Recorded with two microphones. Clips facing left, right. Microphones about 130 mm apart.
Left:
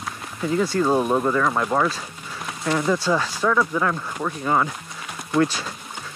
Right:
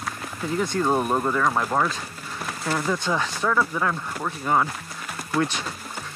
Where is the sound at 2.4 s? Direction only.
Centre (ahead or behind).